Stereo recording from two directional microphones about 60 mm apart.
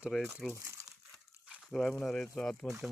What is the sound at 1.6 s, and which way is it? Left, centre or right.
Speech, centre.